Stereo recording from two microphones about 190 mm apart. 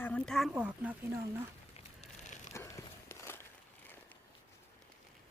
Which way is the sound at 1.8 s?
35° left (ahead or behind).